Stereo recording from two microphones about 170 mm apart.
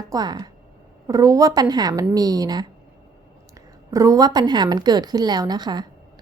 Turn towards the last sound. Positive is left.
turn(degrees=-25)  # may be behind; listen again after turning